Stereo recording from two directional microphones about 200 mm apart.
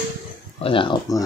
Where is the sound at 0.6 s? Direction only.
25° left (ahead or behind).